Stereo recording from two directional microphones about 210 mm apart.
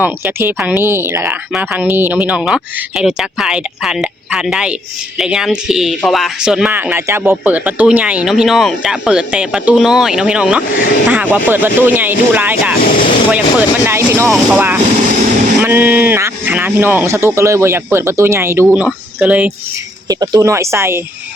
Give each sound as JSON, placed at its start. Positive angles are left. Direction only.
{"t": 0.0, "sound": "a man's voice", "side_deg": -10}
{"t": 12.8, "sound": "speech", "side_deg": 40}
{"t": 13.3, "sound": "a man's voice", "side_deg": -10}
{"t": 20.1, "sound": "a man's voice", "side_deg": -20}